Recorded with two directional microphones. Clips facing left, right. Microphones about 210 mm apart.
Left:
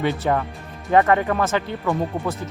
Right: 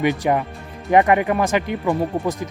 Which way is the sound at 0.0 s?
15° right (ahead or behind).